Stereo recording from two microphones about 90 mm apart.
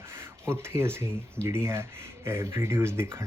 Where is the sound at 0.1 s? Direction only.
30° right (ahead or behind).